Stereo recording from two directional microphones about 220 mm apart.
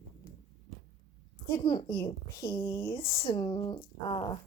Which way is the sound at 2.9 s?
25° left (ahead or behind).